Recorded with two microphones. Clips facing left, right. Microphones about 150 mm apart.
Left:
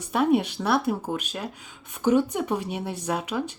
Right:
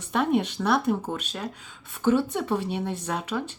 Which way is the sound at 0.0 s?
5° left (ahead or behind).